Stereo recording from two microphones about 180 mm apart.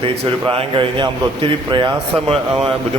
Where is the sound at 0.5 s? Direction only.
30° right (ahead or behind).